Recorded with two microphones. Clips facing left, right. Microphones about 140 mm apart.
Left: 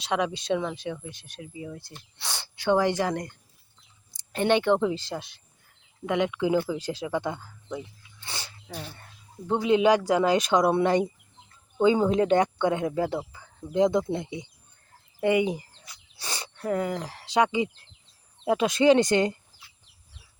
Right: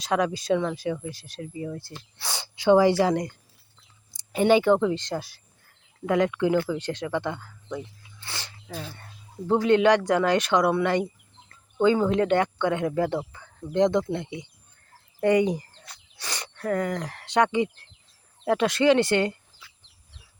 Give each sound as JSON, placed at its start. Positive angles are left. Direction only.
{"t": 0.0, "sound": "speech", "side_deg": 0}
{"t": 2.1, "sound": "speech", "side_deg": -5}
{"t": 4.8, "sound": "speech", "side_deg": 10}
{"t": 8.2, "sound": "sneeze", "side_deg": 15}
{"t": 9.5, "sound": "speech", "side_deg": 5}
{"t": 15.2, "sound": "speech", "side_deg": 5}
{"t": 16.1, "sound": "a sound", "side_deg": 10}
{"t": 16.6, "sound": "speech", "side_deg": 10}